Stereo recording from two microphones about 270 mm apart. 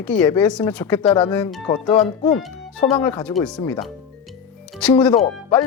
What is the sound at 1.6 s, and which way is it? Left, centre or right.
Speech, centre.